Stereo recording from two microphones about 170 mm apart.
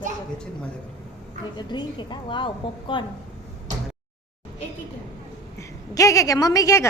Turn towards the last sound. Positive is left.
turn(degrees=20)  # may be behind; listen again after turning